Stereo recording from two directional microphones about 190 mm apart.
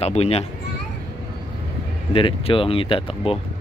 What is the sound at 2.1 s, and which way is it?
Speech, 30° left (ahead or behind).